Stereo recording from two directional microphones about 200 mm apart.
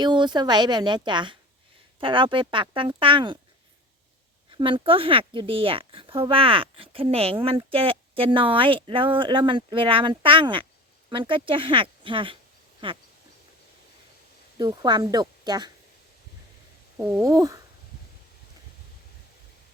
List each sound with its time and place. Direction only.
0.0 s speech: 20° right (ahead or behind)
4.5 s speech: 25° right (ahead or behind)
14.6 s speech: 20° right (ahead or behind)
17.0 s speech: 15° right (ahead or behind)